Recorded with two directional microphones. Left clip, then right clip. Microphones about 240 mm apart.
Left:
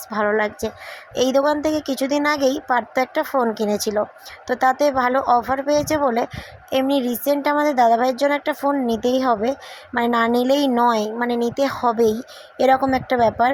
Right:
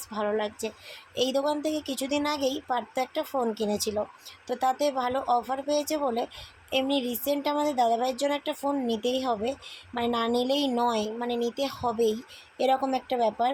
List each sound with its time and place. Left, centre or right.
0.1 s speech: left